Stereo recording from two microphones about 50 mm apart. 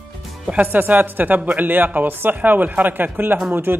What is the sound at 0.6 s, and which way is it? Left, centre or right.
Speech, right.